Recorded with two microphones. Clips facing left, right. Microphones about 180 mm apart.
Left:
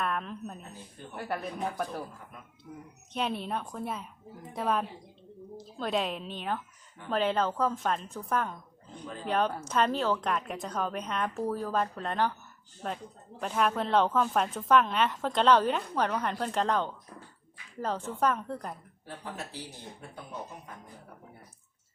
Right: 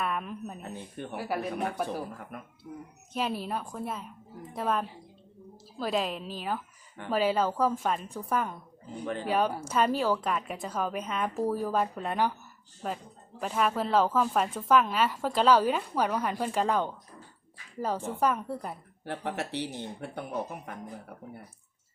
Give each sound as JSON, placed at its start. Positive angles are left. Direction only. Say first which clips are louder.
{"t": 0.0, "sound": "a woman's voice", "louder": "even", "side_deg": -5}
{"t": 0.6, "sound": "speech", "louder": "right 8 dB", "side_deg": -65}
{"t": 1.1, "sound": "a woman's voice", "louder": "right 1 dB", "side_deg": -5}
{"t": 3.1, "sound": "a woman's voice", "louder": "right 1 dB", "side_deg": -5}
{"t": 19.0, "sound": "speech", "louder": "right 7 dB", "side_deg": -75}